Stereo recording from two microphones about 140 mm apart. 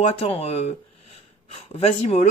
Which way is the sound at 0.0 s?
45° left (ahead or behind).